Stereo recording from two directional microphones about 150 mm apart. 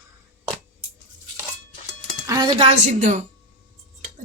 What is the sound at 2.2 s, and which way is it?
Music, 25° right (ahead or behind).